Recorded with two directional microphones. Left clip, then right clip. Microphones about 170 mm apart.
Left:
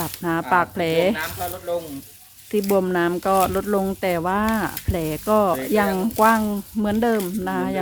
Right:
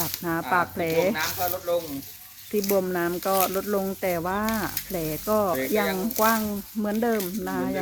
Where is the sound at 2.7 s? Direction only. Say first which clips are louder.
Left 5 dB; 40° left (ahead or behind).